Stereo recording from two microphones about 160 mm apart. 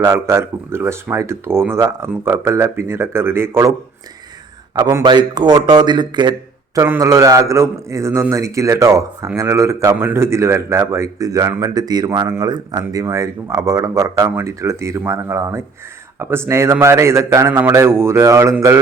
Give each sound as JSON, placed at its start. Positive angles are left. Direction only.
{"t": 0.0, "sound": "speech", "side_deg": -15}
{"t": 6.7, "sound": "speech", "side_deg": -15}